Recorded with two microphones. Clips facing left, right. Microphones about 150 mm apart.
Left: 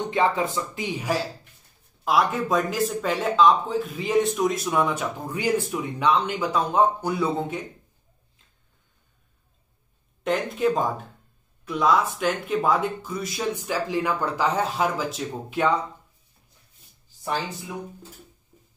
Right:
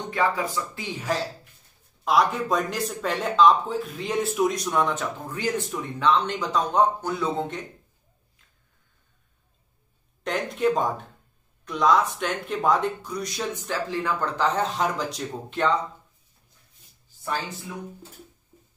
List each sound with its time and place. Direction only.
0.1 s speech: 20° left (ahead or behind)
2.0 s speech: centre (ahead or behind)
10.2 s speech: centre (ahead or behind)